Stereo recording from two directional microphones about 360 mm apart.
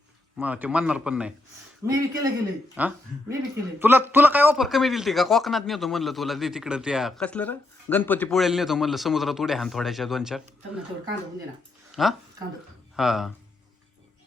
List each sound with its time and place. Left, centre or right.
0.3 s a man's voice: centre
12.0 s a man's voice: centre